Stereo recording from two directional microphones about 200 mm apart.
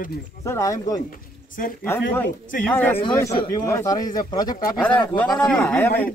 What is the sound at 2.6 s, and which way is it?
Speech, 5° left (ahead or behind).